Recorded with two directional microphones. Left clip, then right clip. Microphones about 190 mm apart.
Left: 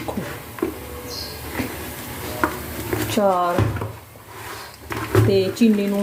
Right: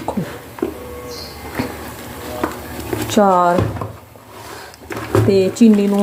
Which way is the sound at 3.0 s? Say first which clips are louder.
Right 6 dB; 30° right (ahead or behind).